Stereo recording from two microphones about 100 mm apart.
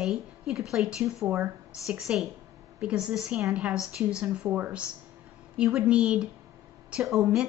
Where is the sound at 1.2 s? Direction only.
20° right (ahead or behind).